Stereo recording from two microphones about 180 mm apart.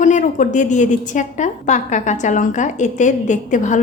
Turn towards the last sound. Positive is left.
turn(degrees=45)  # may be behind; listen again after turning